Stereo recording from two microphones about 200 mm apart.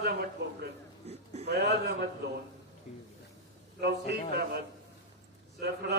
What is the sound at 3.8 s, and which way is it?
Speech, 55° right (ahead or behind).